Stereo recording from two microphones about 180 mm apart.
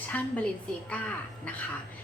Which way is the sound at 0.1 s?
10° left (ahead or behind).